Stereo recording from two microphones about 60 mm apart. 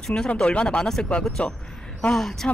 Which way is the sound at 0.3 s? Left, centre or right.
Centre.